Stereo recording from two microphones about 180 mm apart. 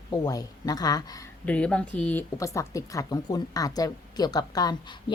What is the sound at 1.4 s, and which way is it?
Speech, 5° left (ahead or behind).